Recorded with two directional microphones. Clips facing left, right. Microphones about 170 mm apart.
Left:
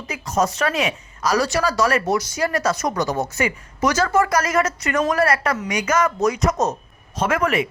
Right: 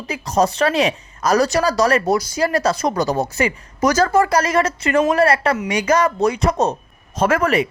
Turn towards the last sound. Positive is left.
turn(degrees=-40)  # may be behind; listen again after turning